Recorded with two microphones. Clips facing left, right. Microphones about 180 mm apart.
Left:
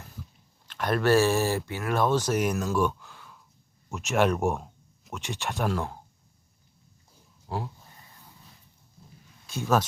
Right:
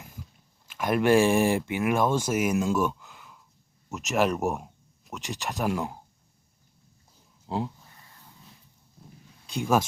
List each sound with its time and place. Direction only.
0.7 s speech: 10° right (ahead or behind)
2.7 s a sound: 10° right (ahead or behind)
3.8 s speech: centre (ahead or behind)
7.4 s speech: 20° right (ahead or behind)
9.5 s speech: 15° right (ahead or behind)